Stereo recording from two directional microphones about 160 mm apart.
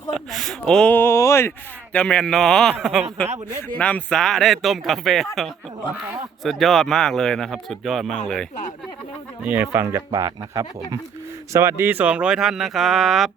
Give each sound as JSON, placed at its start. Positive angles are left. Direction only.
{"t": 0.1, "sound": "a man's voice", "side_deg": 0}
{"t": 9.4, "sound": "speech", "side_deg": -10}